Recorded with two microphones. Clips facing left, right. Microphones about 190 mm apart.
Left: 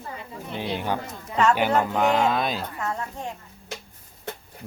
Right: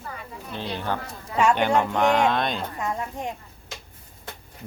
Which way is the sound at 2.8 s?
15° right (ahead or behind).